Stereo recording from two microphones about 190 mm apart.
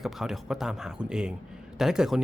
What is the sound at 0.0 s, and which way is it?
Speech, centre (ahead or behind).